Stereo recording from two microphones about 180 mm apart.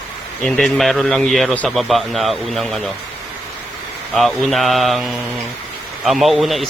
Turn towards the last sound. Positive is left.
turn(degrees=0)  # may be behind; listen again after turning